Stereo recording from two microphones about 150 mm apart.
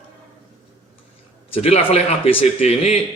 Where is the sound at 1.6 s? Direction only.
45° left (ahead or behind).